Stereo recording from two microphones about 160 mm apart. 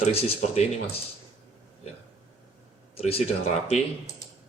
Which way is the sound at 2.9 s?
40° left (ahead or behind).